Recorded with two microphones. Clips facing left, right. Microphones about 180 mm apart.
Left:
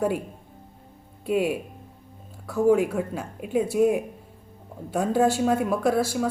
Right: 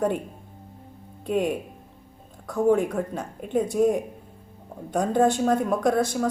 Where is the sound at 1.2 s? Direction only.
5° left (ahead or behind).